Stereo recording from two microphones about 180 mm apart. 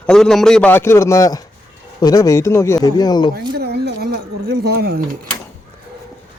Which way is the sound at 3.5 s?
65° right (ahead or behind).